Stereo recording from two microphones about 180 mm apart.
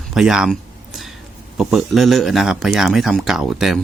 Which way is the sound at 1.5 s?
Centre (ahead or behind).